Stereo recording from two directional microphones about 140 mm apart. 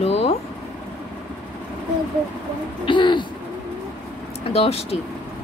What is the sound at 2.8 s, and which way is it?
Speech, 35° left (ahead or behind).